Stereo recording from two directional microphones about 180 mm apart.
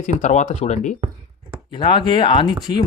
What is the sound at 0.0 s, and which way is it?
Speech, 45° left (ahead or behind).